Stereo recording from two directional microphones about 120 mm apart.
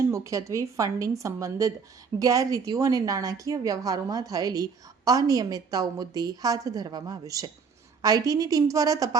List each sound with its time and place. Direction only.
0.1 s a woman's voice: 25° right (ahead or behind)